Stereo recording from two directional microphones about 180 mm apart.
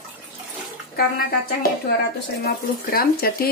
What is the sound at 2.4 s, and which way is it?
Speech, 55° left (ahead or behind).